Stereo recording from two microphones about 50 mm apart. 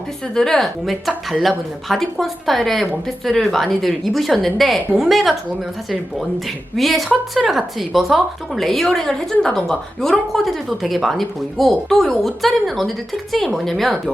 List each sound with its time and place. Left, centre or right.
0.3 s a woman's voice: centre
6.7 s a woman's voice: centre